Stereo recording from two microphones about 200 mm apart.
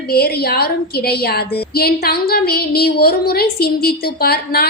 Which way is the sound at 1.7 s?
50° left (ahead or behind).